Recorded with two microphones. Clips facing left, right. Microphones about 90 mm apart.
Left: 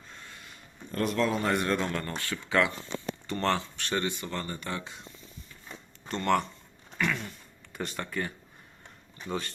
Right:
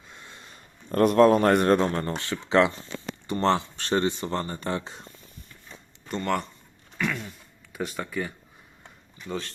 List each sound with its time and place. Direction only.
0.1 s a sound: 20° right (ahead or behind)
0.9 s speech: 50° right (ahead or behind); by 5.0 s 35° right (ahead or behind)
6.1 s speech: 5° right (ahead or behind)
7.0 s throat clearing: centre (ahead or behind)
9.2 s speech: 5° left (ahead or behind)